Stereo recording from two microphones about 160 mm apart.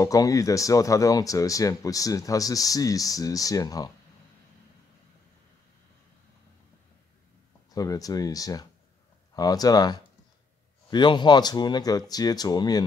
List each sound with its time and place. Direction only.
0.0 s speech: 20° left (ahead or behind)
7.7 s speech: 20° left (ahead or behind)